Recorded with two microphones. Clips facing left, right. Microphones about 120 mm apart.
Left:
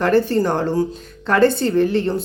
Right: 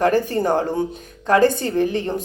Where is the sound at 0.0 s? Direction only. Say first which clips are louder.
Left 2 dB; 15° right (ahead or behind).